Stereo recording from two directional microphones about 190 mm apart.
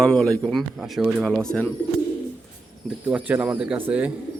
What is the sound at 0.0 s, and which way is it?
Speech, 5° left (ahead or behind).